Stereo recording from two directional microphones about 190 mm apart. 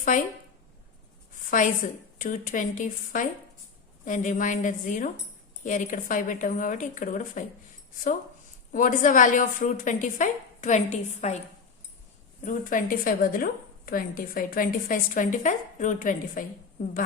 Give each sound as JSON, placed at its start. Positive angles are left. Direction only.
{"t": 0.1, "sound": "a woman's voice", "side_deg": 40}
{"t": 1.5, "sound": "a woman's voice", "side_deg": 45}
{"t": 8.7, "sound": "a woman's voice", "side_deg": 45}
{"t": 12.5, "sound": "a woman's voice", "side_deg": 45}